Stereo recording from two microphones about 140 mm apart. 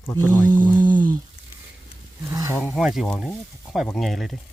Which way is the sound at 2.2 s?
20° right (ahead or behind).